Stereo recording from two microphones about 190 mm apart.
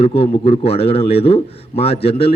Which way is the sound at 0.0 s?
30° left (ahead or behind).